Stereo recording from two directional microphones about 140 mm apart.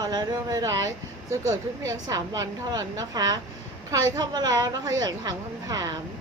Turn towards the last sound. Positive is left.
turn(degrees=-25)  # may be behind; listen again after turning